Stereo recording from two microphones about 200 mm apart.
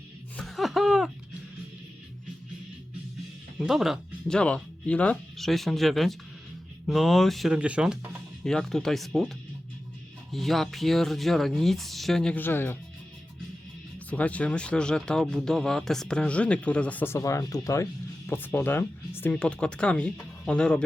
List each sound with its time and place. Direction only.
0.3 s laughter: centre (ahead or behind)
3.6 s speech: centre (ahead or behind)
10.3 s speech: centre (ahead or behind)
14.1 s speech: 5° left (ahead or behind)